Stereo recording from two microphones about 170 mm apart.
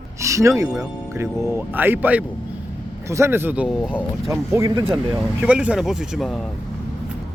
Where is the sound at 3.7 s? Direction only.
10° left (ahead or behind).